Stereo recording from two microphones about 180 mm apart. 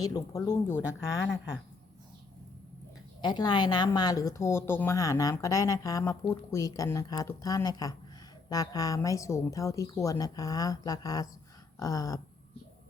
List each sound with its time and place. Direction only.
0.0 s speech: 20° left (ahead or behind)
3.2 s speech: 25° left (ahead or behind)